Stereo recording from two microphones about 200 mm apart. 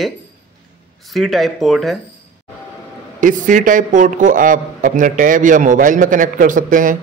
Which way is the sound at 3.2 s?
40° right (ahead or behind).